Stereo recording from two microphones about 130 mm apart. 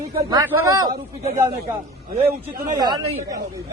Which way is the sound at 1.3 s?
30° right (ahead or behind).